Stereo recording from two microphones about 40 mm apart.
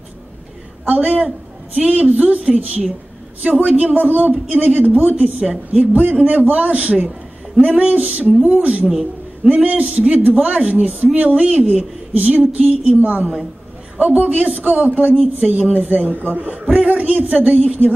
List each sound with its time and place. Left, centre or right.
0.8 s speech: right
8.8 s a woman's voice: centre
9.5 s a man's voice: right